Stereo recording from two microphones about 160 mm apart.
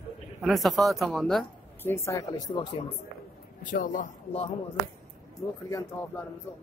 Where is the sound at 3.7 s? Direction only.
55° left (ahead or behind).